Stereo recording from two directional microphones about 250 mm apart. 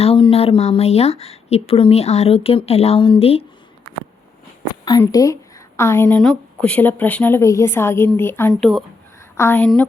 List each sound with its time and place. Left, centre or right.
0.0 s speech: left
4.9 s a woman's voice: centre